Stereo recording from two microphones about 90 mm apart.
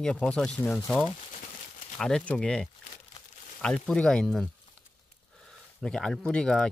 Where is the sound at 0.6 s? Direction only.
20° left (ahead or behind).